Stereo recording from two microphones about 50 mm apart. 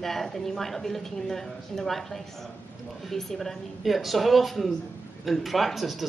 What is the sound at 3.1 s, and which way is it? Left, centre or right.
A woman's voice, centre.